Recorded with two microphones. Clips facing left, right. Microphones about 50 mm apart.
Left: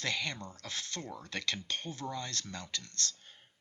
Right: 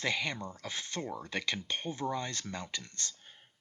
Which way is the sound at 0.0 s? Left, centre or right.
Centre.